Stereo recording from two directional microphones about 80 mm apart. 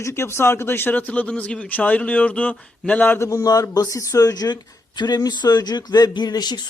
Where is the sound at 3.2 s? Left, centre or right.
Left.